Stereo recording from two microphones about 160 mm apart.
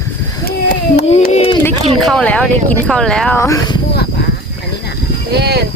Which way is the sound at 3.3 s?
20° left (ahead or behind).